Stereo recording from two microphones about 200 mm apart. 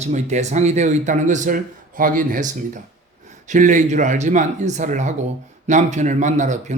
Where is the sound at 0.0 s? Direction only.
35° right (ahead or behind).